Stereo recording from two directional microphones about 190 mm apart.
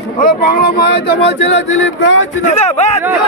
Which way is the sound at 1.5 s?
85° left.